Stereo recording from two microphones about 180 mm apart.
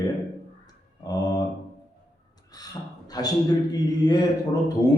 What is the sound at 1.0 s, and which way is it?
Mantra, 20° left (ahead or behind).